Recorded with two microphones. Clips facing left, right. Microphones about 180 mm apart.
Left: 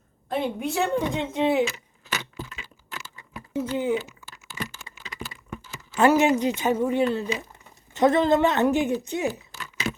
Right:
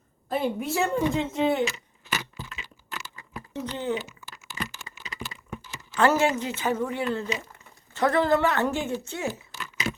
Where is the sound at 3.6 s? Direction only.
10° left (ahead or behind).